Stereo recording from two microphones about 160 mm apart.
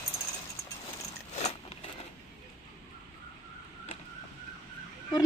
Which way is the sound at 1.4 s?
40° left (ahead or behind).